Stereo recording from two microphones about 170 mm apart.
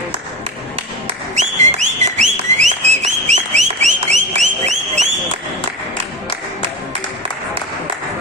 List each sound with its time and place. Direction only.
1.0 s whistling: 45° right (ahead or behind)